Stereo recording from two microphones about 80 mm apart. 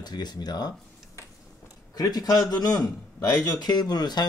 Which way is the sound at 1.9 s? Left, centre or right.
Left.